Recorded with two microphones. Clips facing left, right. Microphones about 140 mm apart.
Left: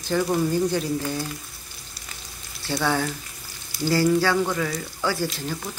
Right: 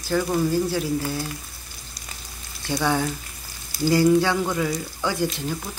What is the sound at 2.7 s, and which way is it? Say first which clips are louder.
Speech: right 1 dB; 10° right (ahead or behind).